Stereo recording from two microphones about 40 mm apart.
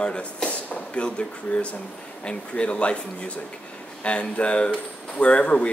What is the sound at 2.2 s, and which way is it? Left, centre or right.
A man's voice, left.